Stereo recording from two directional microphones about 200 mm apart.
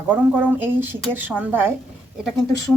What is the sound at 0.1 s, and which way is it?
A woman's voice, 10° right (ahead or behind).